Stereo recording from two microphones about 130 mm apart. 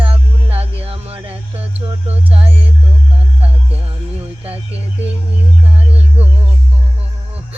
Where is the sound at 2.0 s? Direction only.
50° right (ahead or behind).